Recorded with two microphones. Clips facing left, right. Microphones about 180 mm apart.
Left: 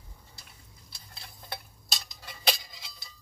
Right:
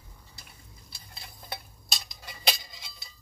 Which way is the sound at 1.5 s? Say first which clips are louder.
Right 1 dB; 10° right (ahead or behind).